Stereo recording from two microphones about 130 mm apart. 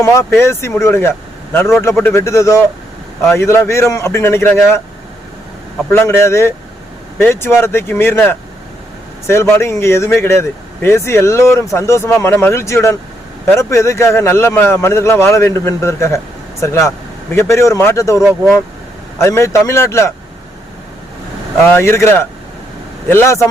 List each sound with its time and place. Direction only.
0.0 s speech: 20° left (ahead or behind)
5.9 s speech: 20° left (ahead or behind)
18.2 s speech: 5° right (ahead or behind)
19.2 s speech: 20° left (ahead or behind)
21.7 s speech: 20° left (ahead or behind)